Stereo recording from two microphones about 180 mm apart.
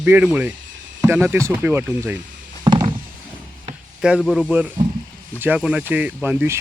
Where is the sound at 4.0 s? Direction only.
Centre (ahead or behind).